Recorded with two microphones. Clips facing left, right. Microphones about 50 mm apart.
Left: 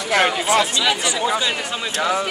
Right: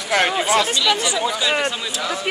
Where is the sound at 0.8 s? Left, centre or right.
Centre.